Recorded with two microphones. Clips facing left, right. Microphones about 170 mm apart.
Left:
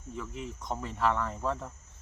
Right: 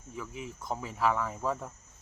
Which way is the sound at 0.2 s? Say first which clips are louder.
Even; 5° right (ahead or behind).